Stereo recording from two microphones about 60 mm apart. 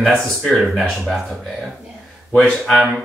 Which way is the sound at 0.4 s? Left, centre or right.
Centre.